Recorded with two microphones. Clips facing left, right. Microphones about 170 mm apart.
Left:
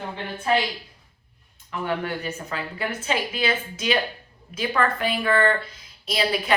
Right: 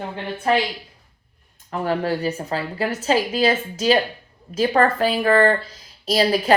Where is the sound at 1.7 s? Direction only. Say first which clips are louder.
Right 5 dB; 35° right (ahead or behind).